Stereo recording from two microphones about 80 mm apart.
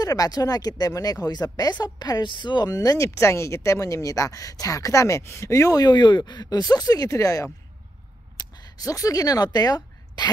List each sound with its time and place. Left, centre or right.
0.0 s speech: left
5.8 s speech: left